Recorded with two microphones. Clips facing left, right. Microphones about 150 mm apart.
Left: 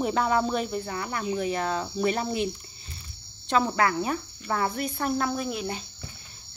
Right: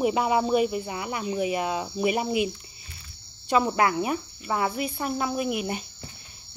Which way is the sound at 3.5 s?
15° right (ahead or behind).